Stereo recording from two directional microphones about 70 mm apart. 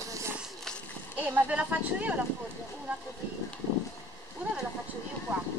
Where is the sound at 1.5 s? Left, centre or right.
Centre.